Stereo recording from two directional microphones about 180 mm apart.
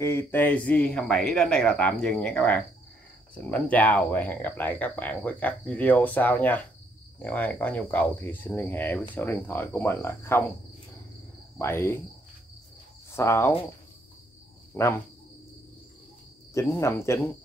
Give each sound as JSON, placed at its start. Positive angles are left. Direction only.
{"t": 0.0, "sound": "speech", "side_deg": 15}
{"t": 11.5, "sound": "speech", "side_deg": 15}
{"t": 13.1, "sound": "speech", "side_deg": 15}
{"t": 14.7, "sound": "speech", "side_deg": 15}
{"t": 16.5, "sound": "speech", "side_deg": 15}